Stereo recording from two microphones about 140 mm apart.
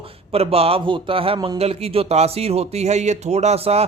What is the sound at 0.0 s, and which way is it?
Speech, 45° right (ahead or behind).